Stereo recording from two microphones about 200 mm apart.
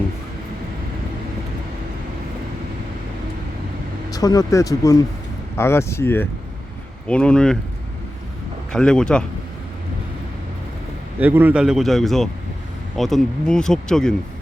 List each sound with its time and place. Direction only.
4.1 s speech: 20° left (ahead or behind)
8.7 s speech: 5° left (ahead or behind)
11.2 s speech: 10° right (ahead or behind)